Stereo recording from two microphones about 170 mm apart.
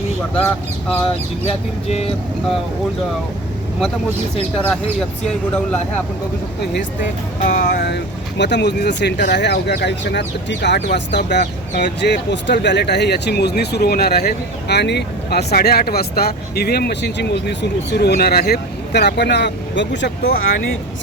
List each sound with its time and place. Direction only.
0.3 s speech: 10° left (ahead or behind)
1.9 s speech: 35° left (ahead or behind)
4.5 s speech: 5° left (ahead or behind)
7.4 s speech: 60° left (ahead or behind); by 15.4 s 80° left
15.5 s speech: 65° left (ahead or behind)